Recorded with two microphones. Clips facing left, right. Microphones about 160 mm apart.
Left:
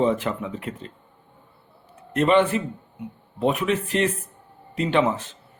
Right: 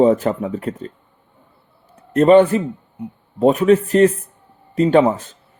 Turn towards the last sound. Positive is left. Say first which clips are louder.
# right 8 dB
turn(degrees=-40)  # may be behind; listen again after turning